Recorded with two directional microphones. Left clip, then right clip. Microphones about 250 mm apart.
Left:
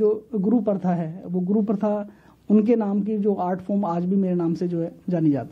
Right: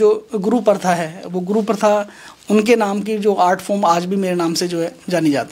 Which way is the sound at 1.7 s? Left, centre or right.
Centre.